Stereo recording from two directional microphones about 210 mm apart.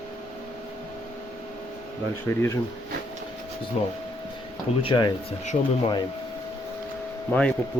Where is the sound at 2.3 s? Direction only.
10° left (ahead or behind).